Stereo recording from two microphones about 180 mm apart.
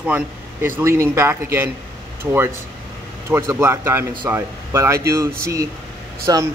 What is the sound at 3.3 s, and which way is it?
Speech, 15° right (ahead or behind).